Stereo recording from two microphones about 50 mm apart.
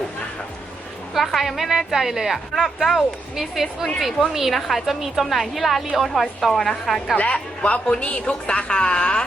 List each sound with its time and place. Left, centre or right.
1.1 s a woman's voice: centre
3.8 s a woman's voice: centre
4.3 s a woman's voice: centre
7.3 s a man's voice: centre